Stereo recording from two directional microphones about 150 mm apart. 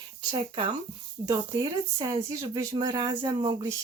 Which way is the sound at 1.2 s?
20° right (ahead or behind).